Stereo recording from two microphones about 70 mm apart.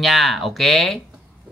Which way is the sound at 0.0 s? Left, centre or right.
Centre.